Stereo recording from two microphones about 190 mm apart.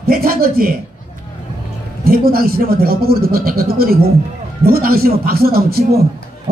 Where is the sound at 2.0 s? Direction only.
50° right (ahead or behind).